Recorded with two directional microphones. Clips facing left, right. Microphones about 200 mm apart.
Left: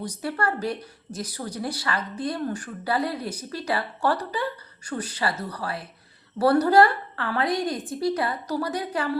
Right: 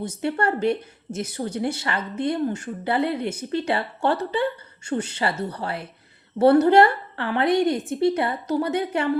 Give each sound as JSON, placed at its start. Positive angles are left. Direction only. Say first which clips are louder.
{"t": 0.0, "sound": "speech", "louder": "right 4 dB", "side_deg": -25}